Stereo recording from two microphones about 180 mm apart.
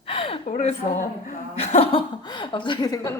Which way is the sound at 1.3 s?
35° left (ahead or behind).